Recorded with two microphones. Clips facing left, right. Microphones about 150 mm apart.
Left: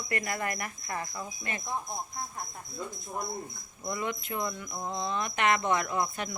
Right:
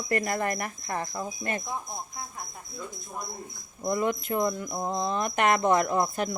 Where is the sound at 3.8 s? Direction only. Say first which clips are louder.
Right 7 dB; 40° right (ahead or behind).